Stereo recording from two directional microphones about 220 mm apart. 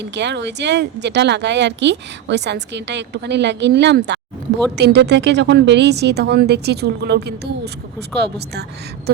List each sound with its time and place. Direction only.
0.0 s speech: 50° right (ahead or behind)